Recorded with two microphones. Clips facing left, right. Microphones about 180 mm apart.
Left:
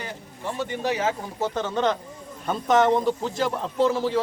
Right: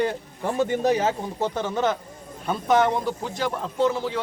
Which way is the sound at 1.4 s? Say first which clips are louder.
Even; 10° right (ahead or behind).